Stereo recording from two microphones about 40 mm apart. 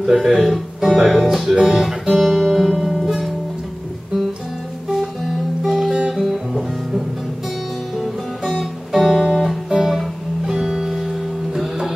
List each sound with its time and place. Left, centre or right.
0.0 s speech: centre
1.1 s music: centre
5.6 s music: centre
8.0 s music: centre